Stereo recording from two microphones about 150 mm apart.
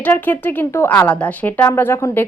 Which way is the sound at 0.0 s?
10° left (ahead or behind).